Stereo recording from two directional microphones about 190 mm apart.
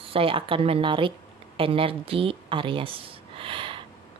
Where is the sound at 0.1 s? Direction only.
30° right (ahead or behind).